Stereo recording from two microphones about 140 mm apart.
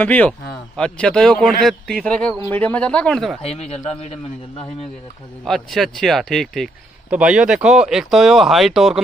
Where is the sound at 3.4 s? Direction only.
50° left (ahead or behind).